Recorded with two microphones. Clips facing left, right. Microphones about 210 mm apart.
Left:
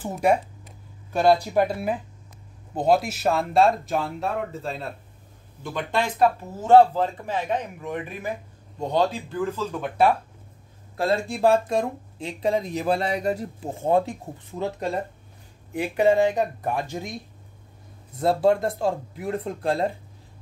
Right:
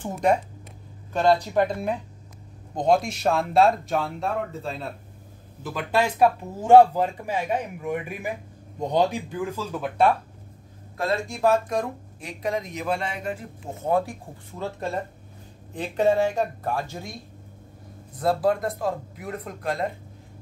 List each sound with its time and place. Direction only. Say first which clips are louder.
0.0 s speech: left 1 dB; 5° left (ahead or behind); by 9.8 s 10° right (ahead or behind)
11.0 s speech: left 3 dB; 30° left (ahead or behind)
18.1 s speech: left 2 dB; 25° left (ahead or behind)